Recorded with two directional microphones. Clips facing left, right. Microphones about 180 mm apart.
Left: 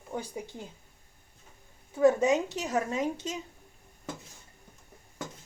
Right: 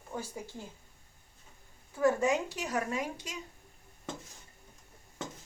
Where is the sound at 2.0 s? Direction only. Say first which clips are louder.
Left 5 dB; 20° left (ahead or behind).